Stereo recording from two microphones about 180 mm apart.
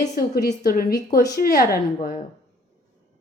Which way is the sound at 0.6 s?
55° left (ahead or behind).